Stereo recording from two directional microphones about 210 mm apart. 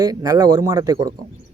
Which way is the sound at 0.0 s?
15° right (ahead or behind).